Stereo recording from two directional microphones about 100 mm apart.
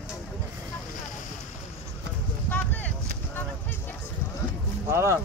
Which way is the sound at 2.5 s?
15° left (ahead or behind).